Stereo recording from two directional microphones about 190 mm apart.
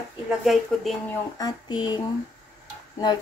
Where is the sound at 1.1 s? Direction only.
20° left (ahead or behind).